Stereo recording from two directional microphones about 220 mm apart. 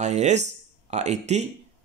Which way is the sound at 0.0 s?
30° right (ahead or behind).